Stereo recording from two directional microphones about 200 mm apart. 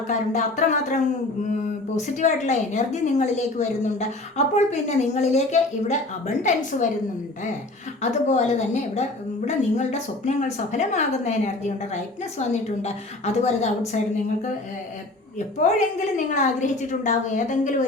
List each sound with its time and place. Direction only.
0.1 s a woman's voice: 35° left (ahead or behind)
8.3 s a woman's voice: 35° left (ahead or behind)
15.4 s a woman's voice: 35° left (ahead or behind)